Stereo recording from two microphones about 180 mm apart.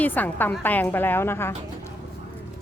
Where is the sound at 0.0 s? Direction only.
10° left (ahead or behind).